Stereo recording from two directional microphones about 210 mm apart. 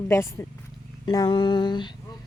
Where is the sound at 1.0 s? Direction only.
20° left (ahead or behind).